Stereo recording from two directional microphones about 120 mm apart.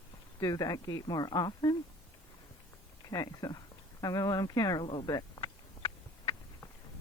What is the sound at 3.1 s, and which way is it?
Speech, 30° left (ahead or behind).